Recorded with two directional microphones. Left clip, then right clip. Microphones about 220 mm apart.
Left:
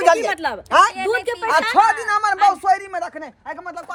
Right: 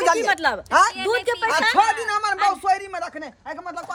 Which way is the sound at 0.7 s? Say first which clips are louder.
Left 4 dB; 30° left (ahead or behind).